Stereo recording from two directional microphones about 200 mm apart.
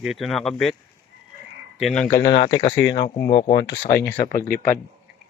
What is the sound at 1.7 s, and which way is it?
Speech, centre (ahead or behind).